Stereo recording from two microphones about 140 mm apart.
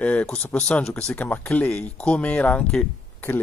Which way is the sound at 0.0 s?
10° left (ahead or behind).